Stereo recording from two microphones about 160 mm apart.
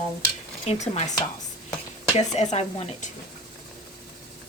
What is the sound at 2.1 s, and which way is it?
Speech, 45° left (ahead or behind).